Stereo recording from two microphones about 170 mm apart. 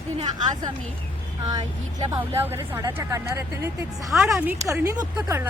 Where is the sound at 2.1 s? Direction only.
15° right (ahead or behind).